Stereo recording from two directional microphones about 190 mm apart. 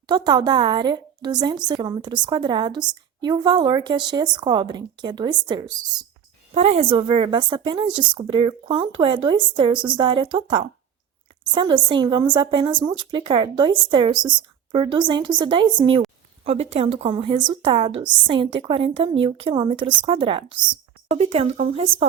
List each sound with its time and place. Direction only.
0.1 s a woman's voice: 20° right (ahead or behind)
6.5 s a woman's voice: 30° right (ahead or behind)